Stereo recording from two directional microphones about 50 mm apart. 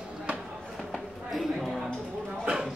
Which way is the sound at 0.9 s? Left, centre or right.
Centre.